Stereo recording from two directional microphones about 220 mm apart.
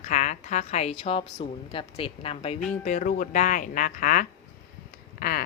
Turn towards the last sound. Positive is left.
turn(degrees=40)  # may be behind; listen again after turning